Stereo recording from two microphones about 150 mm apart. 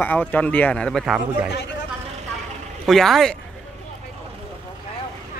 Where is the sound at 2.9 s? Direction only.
Centre (ahead or behind).